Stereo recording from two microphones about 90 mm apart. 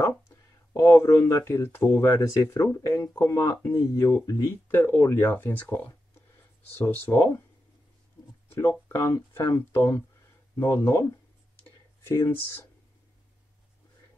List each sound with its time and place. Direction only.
0.0 s speech: 35° left (ahead or behind)
2.0 s speech: 40° left (ahead or behind); by 7.4 s 25° left (ahead or behind)
8.5 s speech: 35° left (ahead or behind)